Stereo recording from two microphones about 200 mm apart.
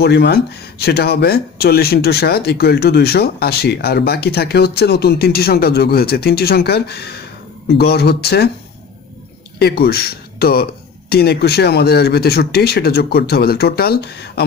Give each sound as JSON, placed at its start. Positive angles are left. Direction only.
{"t": 0.0, "sound": "speech", "side_deg": 55}
{"t": 9.6, "sound": "speech", "side_deg": 50}